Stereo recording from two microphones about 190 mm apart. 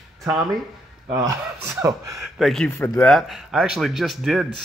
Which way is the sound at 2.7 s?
15° left (ahead or behind).